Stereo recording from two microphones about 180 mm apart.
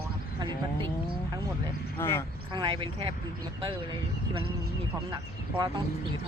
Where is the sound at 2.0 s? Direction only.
15° left (ahead or behind).